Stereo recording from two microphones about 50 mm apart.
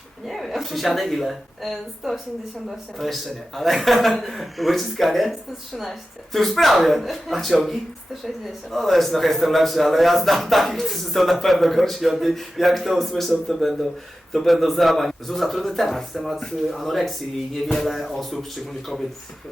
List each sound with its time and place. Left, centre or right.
0.3 s a woman's voice: centre